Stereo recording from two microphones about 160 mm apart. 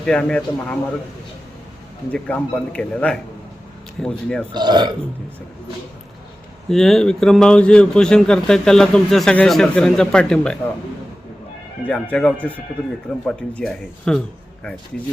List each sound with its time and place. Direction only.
0.0 s a man's voice: 5° left (ahead or behind)
2.1 s a man's voice: 5° left (ahead or behind)
4.5 s speech: 25° right (ahead or behind)
6.7 s a man's voice: 5° left (ahead or behind)
11.9 s a man's voice: 5° left (ahead or behind)